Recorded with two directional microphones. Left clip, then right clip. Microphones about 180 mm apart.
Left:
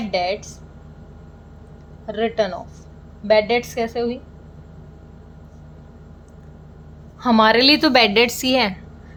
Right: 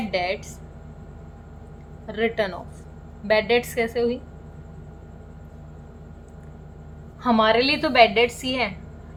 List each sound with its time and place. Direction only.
0.1 s speech: 15° left (ahead or behind)
2.0 s speech: 10° left (ahead or behind)
7.2 s a woman's voice: 25° left (ahead or behind)
7.4 s a woman's voice: 45° left (ahead or behind)